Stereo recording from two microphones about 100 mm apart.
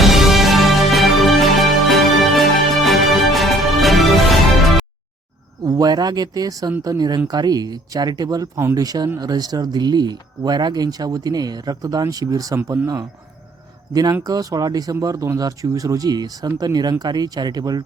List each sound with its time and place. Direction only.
0.0 s music: 5° right (ahead or behind)
5.6 s speech: 40° right (ahead or behind)
13.9 s speech: 40° right (ahead or behind)